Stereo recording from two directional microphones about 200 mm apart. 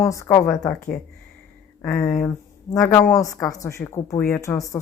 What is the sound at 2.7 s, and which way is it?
A woman's voice, 15° left (ahead or behind).